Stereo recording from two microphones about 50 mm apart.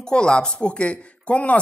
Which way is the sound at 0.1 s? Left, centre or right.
Centre.